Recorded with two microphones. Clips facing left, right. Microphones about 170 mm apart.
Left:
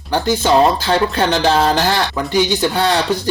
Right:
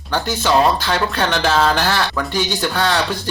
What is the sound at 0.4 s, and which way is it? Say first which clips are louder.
Speech: left 1 dB; 30° left (ahead or behind).